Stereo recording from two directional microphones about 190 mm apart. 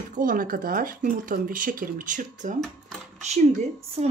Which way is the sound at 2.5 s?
5° left (ahead or behind).